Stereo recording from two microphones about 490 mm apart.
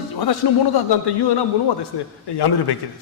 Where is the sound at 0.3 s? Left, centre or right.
Left.